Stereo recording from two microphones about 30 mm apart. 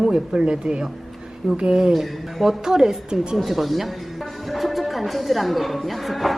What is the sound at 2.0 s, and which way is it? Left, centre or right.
A woman's voice, centre.